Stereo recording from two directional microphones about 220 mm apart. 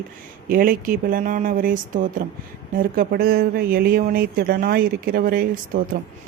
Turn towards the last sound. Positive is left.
turn(degrees=-40)  # may be behind; listen again after turning